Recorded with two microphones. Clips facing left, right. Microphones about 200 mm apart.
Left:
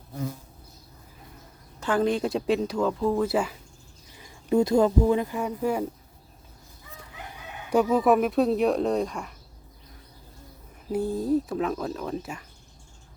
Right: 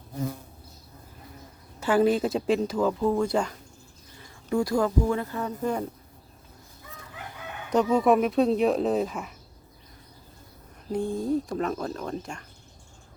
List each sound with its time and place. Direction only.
1.8 s speech: 5° right (ahead or behind)
4.2 s speech: 20° left (ahead or behind)
7.7 s speech: 5° left (ahead or behind)
10.9 s speech: 5° left (ahead or behind)